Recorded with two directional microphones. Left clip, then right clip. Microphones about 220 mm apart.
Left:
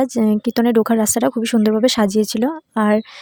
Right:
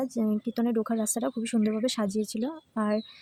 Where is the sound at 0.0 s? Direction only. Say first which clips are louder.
Left 12 dB; 40° left (ahead or behind).